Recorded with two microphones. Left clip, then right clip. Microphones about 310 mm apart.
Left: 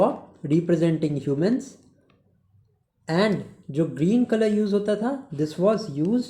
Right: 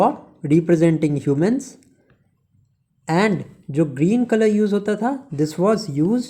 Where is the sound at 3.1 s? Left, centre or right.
Right.